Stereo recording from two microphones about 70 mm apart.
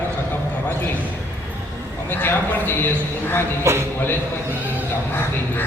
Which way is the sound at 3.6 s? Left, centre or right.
Right.